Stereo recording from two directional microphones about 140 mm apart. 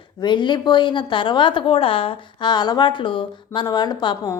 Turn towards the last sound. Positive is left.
turn(degrees=30)  # may be behind; listen again after turning